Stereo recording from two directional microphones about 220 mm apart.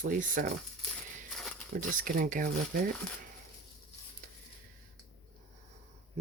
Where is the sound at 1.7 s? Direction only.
40° right (ahead or behind).